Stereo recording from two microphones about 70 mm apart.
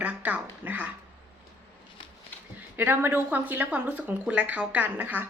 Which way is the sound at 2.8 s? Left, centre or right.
Right.